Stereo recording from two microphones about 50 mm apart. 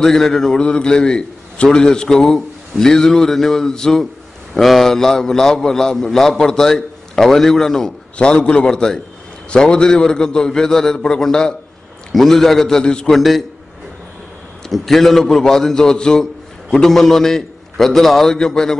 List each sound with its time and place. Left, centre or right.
0.0 s a man's voice: centre
8.2 s a man's voice: centre
13.1 s a man's voice: centre
14.7 s a man's voice: centre